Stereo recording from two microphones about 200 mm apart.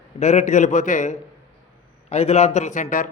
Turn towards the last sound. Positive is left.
turn(degrees=40)  # may be behind; listen again after turning